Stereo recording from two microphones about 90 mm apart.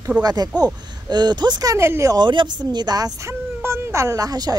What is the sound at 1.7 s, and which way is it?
Speech, 30° right (ahead or behind).